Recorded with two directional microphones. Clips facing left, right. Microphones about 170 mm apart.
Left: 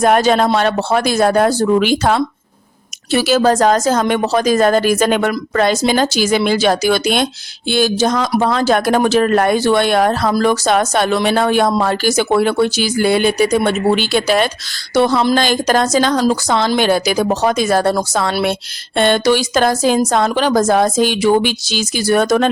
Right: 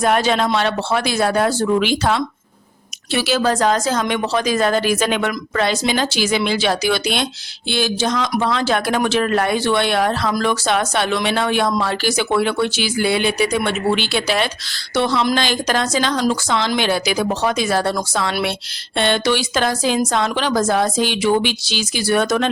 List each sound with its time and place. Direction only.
0.0 s a woman's voice: 45° left (ahead or behind)